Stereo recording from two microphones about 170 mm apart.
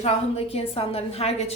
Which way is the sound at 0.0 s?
35° left (ahead or behind).